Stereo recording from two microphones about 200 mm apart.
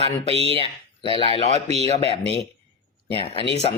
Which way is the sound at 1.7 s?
30° right (ahead or behind).